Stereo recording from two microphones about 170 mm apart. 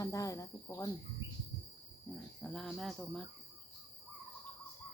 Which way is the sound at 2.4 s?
5° left (ahead or behind).